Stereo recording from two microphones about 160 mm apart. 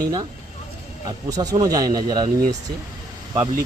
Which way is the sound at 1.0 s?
25° right (ahead or behind).